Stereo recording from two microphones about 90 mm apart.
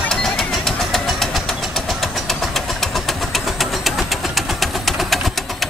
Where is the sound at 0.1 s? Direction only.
5° left (ahead or behind).